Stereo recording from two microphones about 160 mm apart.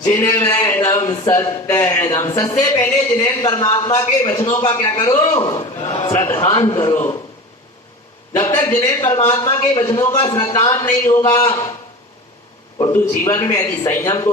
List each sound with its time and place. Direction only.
0.1 s a man's voice: 15° left (ahead or behind)
8.4 s speech: 20° left (ahead or behind)
12.9 s speech: 20° left (ahead or behind)